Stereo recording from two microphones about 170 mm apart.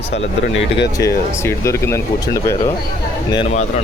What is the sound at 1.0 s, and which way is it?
Speech, 15° left (ahead or behind).